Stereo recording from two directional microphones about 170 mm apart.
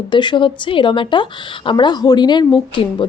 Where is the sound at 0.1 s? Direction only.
30° left (ahead or behind).